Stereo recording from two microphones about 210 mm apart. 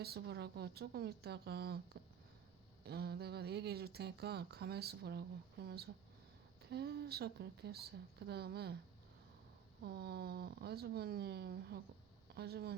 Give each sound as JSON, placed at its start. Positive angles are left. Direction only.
{"t": 0.0, "sound": "speech", "side_deg": -50}
{"t": 9.8, "sound": "speech", "side_deg": -50}